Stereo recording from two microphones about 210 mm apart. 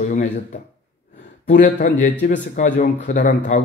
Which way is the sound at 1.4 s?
35° left (ahead or behind).